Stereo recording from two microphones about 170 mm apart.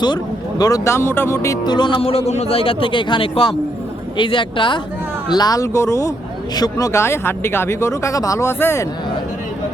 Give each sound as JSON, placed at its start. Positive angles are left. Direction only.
{"t": 0.6, "sound": "speech", "side_deg": 20}